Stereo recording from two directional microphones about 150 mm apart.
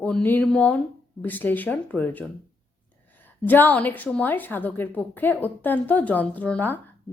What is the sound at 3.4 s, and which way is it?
A woman's voice, 10° left (ahead or behind).